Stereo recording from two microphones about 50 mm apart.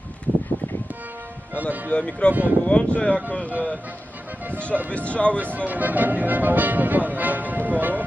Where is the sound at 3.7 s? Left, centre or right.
Right.